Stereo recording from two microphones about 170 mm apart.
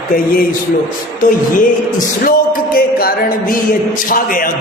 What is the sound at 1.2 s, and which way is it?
Music, 50° left (ahead or behind).